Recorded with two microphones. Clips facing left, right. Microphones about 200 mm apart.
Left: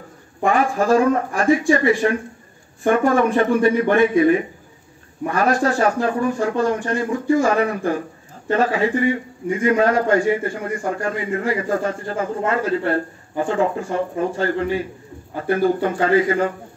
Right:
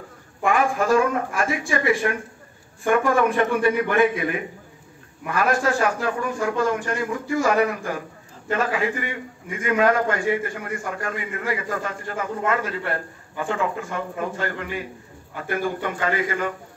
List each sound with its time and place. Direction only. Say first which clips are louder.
0.4 s a man's voice: left 3 dB; 35° left (ahead or behind)